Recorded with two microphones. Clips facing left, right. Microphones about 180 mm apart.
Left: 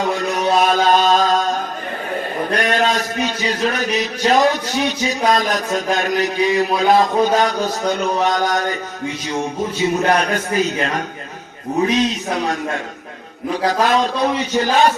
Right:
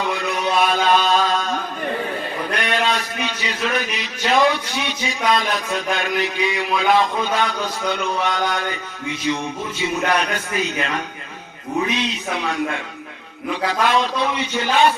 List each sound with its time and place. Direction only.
0.0 s mantra: 40° left (ahead or behind)
2.5 s a man's voice: 40° left (ahead or behind)
10.1 s a man's voice: 40° left (ahead or behind)